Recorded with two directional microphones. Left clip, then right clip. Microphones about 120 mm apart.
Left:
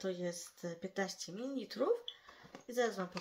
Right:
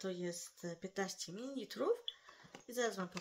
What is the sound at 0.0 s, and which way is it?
Speech, 30° right (ahead or behind).